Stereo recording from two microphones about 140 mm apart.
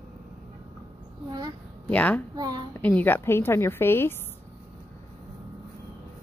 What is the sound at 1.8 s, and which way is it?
Speech, 10° left (ahead or behind).